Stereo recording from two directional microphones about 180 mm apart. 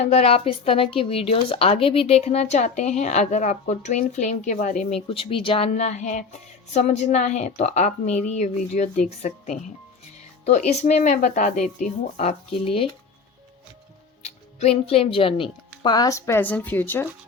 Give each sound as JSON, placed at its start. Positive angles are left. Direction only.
{"t": 0.0, "sound": "a woman's voice", "side_deg": 35}
{"t": 14.2, "sound": "speech", "side_deg": 35}